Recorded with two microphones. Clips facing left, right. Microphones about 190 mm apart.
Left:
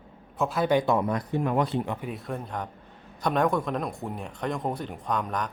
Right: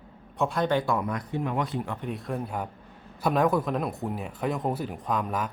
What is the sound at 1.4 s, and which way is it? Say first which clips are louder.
Speech: left 4 dB; 45° left (ahead or behind).